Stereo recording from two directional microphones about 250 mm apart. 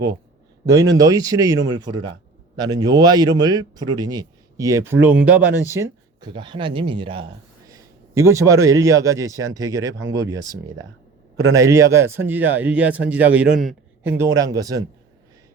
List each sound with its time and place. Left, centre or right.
0.7 s a man's voice: centre